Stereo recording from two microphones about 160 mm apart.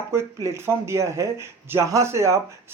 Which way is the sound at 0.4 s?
15° right (ahead or behind).